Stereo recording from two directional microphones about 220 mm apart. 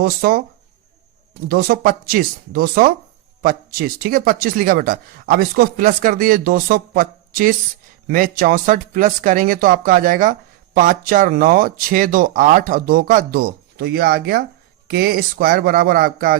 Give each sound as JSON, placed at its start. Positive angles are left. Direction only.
{"t": 0.0, "sound": "speech", "side_deg": -40}
{"t": 1.5, "sound": "speech", "side_deg": -45}